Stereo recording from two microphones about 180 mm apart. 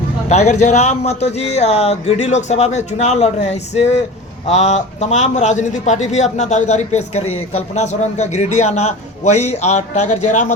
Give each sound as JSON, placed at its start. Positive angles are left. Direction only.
{"t": 0.3, "sound": "a man's voice", "side_deg": 40}